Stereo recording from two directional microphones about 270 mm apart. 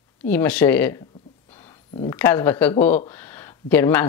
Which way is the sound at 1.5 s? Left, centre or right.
Centre.